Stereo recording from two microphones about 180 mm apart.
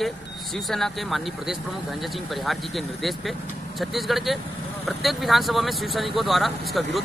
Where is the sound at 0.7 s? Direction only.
Centre (ahead or behind).